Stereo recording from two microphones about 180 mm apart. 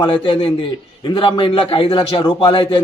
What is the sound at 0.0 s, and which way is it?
A man's voice, 30° left (ahead or behind).